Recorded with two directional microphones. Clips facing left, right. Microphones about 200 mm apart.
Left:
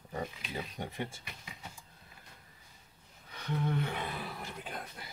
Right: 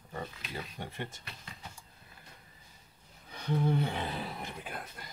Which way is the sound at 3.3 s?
30° right (ahead or behind).